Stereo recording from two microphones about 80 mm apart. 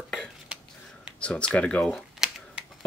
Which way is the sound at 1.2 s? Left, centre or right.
Centre.